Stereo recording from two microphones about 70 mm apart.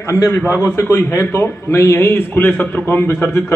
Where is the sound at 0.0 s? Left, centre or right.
Left.